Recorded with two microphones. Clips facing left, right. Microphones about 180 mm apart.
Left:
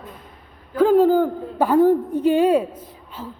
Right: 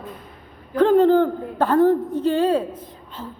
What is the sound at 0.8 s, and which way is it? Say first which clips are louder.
A woman's voice: even; 5° left (ahead or behind).